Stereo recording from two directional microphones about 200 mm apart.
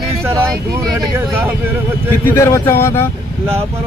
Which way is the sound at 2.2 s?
15° left (ahead or behind).